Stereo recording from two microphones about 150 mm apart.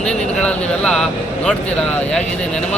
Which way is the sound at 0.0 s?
5° left (ahead or behind).